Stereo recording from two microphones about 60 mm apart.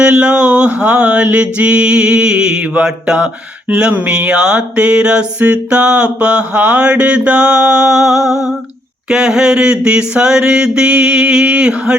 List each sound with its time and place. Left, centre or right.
0.0 s mantra: centre